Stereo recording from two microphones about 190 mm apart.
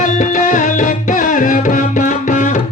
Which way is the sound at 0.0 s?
45° left (ahead or behind).